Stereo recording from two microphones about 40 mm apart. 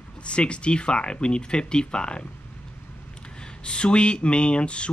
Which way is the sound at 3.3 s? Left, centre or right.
Left.